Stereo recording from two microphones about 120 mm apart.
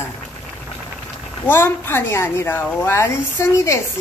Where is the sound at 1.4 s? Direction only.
20° left (ahead or behind).